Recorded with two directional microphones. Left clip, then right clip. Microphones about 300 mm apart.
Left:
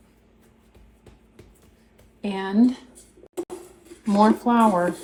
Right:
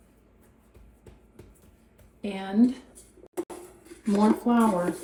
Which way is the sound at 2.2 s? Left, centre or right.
Centre.